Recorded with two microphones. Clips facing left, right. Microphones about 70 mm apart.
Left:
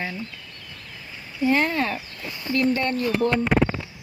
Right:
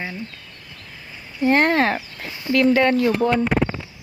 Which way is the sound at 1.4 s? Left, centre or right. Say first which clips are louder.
Right 5 dB; right.